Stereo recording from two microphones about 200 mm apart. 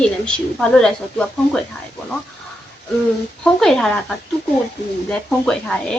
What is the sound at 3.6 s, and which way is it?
Speech, 5° left (ahead or behind).